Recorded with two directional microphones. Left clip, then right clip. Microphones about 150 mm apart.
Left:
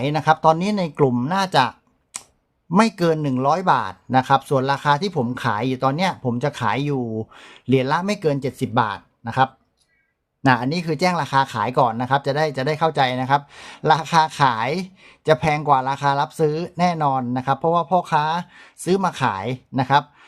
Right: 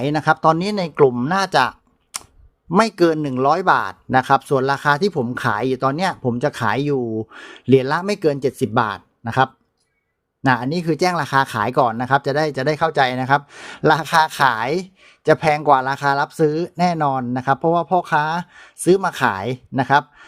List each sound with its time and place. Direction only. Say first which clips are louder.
0.0 s speech: right 1 dB; 35° right (ahead or behind)
2.1 s clicking: right 5 dB; 40° right (ahead or behind)
2.6 s speech: right 2 dB; 40° right (ahead or behind)
10.4 s speech: even; centre (ahead or behind)
10.8 s speech: right 2 dB; 35° right (ahead or behind)